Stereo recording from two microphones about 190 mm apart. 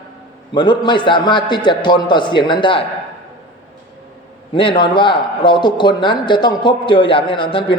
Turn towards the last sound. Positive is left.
turn(degrees=25)  # may be behind; listen again after turning